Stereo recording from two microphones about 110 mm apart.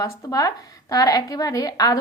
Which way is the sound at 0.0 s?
30° left (ahead or behind).